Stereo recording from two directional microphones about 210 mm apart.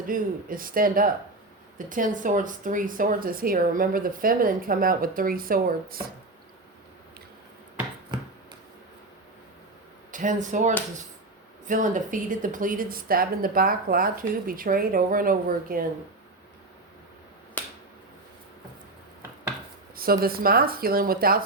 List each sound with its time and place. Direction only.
0.1 s speech: 40° right (ahead or behind)
10.1 s speech: 35° right (ahead or behind)
17.6 s finger snapping: 10° left (ahead or behind)
20.0 s speech: 45° right (ahead or behind)